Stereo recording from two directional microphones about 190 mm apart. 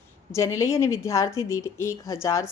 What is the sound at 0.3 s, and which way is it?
A woman's voice, 15° left (ahead or behind).